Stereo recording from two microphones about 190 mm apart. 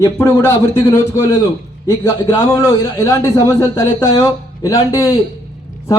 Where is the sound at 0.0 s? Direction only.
15° left (ahead or behind).